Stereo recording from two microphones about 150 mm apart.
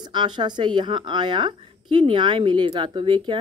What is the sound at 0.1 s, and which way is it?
A woman's voice, 30° right (ahead or behind).